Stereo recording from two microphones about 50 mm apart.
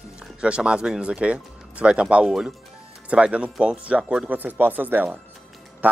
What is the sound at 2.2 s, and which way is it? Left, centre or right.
Speech, centre.